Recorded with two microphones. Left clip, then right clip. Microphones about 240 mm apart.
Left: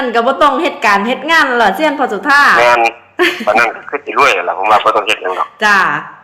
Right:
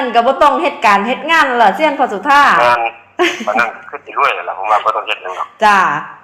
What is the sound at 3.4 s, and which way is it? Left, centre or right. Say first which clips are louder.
Speech: left 4 dB; left.